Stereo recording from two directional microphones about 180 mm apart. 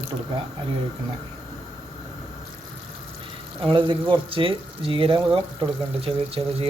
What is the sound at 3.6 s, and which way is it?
Speech, 25° right (ahead or behind).